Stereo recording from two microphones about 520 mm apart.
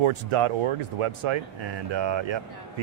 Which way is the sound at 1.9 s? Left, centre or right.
Right.